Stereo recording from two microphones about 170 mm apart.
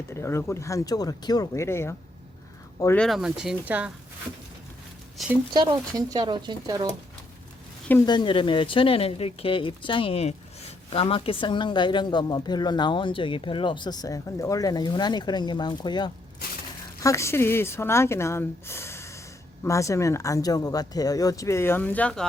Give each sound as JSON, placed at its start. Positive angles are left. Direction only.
{"t": 0.1, "sound": "speech", "side_deg": 15}
{"t": 3.0, "sound": "speech", "side_deg": 0}
{"t": 5.2, "sound": "speech", "side_deg": 0}
{"t": 6.0, "sound": "speech", "side_deg": -25}
{"t": 8.0, "sound": "speech", "side_deg": 25}